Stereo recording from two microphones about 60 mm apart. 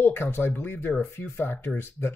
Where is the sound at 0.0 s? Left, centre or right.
Left.